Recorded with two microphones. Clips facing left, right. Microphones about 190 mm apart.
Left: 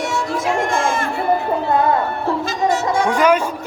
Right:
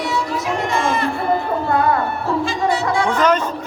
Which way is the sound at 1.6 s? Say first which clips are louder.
Left 1 dB; 20° left (ahead or behind).